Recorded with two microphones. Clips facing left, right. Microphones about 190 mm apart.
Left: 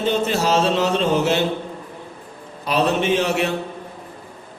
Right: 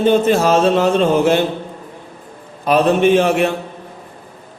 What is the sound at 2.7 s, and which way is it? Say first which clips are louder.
Speech: right 6 dB; 50° right (ahead or behind).